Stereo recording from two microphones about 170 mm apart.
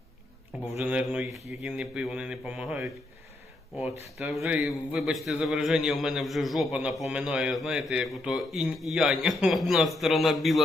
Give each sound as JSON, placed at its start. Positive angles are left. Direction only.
{"t": 0.8, "sound": "a man's voice", "side_deg": -5}
{"t": 4.2, "sound": "a man's voice", "side_deg": 0}